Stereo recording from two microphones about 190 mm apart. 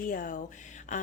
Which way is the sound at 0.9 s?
40° left (ahead or behind).